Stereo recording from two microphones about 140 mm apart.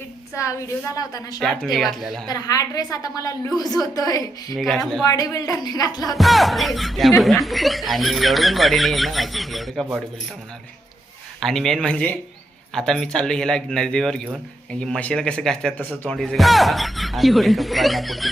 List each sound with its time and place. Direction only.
0.4 s a woman's voice: 20° left (ahead or behind)
1.4 s speech: centre (ahead or behind)
2.3 s a woman's voice: 25° left (ahead or behind)
4.5 s speech: centre (ahead or behind)
5.0 s a woman's voice: 25° left (ahead or behind)
6.0 s speech: centre (ahead or behind)
11.3 s speech: centre (ahead or behind)